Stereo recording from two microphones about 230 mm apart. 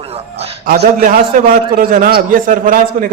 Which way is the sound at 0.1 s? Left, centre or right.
Right.